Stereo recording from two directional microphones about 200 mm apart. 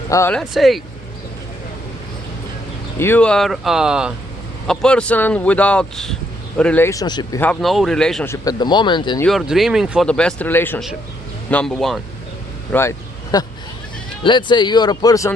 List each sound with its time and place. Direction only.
0.1 s speech: 15° left (ahead or behind)
0.3 s speech: centre (ahead or behind)
3.0 s speech: 10° left (ahead or behind)
7.4 s speech: 5° left (ahead or behind); by 9.2 s 25° left (ahead or behind)
9.2 s speech: centre (ahead or behind)
13.3 s speech: 20° left (ahead or behind)